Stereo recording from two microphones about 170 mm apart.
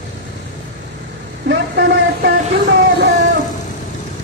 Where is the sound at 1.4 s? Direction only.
85° right.